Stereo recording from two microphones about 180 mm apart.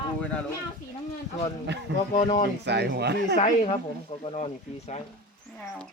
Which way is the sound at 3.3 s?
45° left (ahead or behind).